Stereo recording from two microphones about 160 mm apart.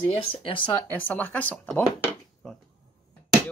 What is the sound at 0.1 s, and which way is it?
Speech, 35° left (ahead or behind).